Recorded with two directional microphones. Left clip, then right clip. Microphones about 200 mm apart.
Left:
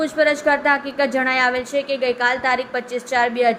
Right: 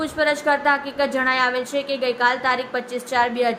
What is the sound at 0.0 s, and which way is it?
A woman's voice, 10° left (ahead or behind).